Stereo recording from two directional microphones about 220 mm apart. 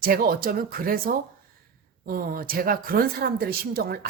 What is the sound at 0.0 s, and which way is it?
Speech, 40° right (ahead or behind).